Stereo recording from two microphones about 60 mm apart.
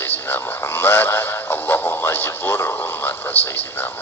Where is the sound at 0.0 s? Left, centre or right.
Left.